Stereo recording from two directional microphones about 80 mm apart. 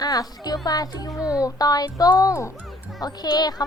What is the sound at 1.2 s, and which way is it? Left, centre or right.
Speech, centre.